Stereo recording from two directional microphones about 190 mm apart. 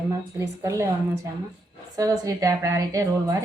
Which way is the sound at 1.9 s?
20° right (ahead or behind).